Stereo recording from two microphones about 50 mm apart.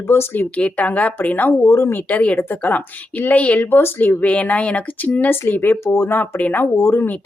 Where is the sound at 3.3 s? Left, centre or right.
Left.